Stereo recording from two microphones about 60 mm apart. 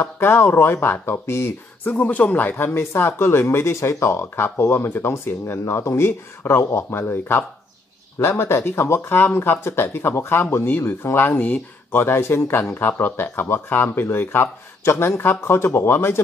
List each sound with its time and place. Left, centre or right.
0.0 s speech: left
1.9 s speech: left
2.5 s speech: left